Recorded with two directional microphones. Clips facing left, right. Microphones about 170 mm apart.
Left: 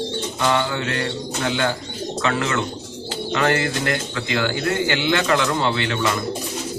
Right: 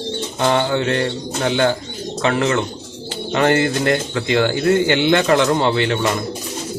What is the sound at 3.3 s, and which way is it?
A man's voice, 30° right (ahead or behind).